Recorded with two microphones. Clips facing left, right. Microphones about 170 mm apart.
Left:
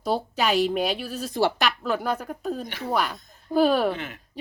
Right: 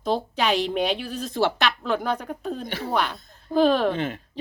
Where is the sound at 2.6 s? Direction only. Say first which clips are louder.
Right 2 dB; 30° right (ahead or behind).